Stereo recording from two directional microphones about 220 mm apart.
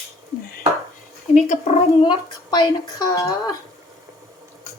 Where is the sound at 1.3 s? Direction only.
30° left (ahead or behind).